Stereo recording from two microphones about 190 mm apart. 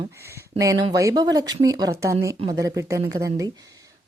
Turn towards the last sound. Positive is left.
turn(degrees=-20)  # may be behind; listen again after turning